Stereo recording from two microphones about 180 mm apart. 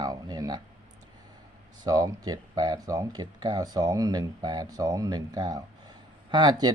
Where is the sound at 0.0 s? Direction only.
20° right (ahead or behind).